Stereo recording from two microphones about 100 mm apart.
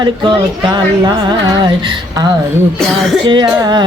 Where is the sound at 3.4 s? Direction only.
40° right (ahead or behind).